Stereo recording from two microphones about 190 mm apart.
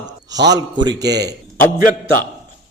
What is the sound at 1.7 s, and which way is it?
Speech, 45° left (ahead or behind).